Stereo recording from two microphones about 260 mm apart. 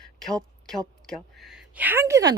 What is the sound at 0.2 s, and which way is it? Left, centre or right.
A woman's voice, centre.